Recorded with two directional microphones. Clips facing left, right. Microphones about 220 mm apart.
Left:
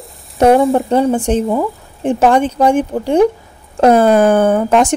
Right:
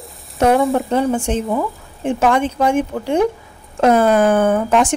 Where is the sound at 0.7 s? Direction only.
35° left (ahead or behind).